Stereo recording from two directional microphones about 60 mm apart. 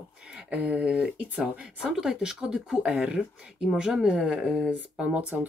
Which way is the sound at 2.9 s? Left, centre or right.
Centre.